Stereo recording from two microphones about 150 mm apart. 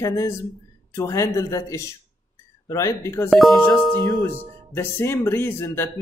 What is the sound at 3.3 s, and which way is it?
Speech, centre (ahead or behind).